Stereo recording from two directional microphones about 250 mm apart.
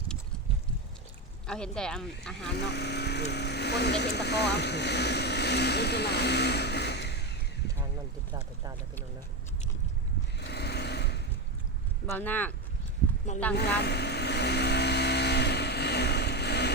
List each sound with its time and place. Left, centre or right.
1.5 s speech: centre
2.6 s speech: left
10.3 s sewing machine: left
12.1 s speech: centre
13.6 s vehicle: left